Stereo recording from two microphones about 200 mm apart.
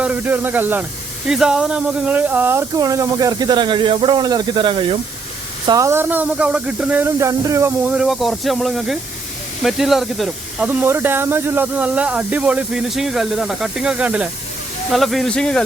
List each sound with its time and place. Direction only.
0.0 s speech: 10° right (ahead or behind)
7.9 s speech: centre (ahead or behind)